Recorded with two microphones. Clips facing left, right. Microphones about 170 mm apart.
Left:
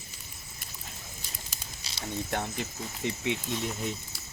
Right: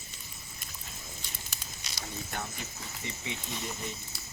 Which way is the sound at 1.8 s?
30° left (ahead or behind).